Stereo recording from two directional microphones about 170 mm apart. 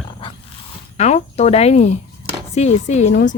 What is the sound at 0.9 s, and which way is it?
Speech, 40° left (ahead or behind).